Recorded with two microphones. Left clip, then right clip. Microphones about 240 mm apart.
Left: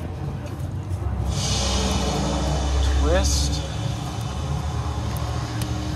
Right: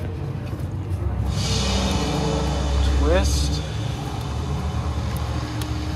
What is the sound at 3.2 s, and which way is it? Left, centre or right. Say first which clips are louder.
Vehicle: even; left.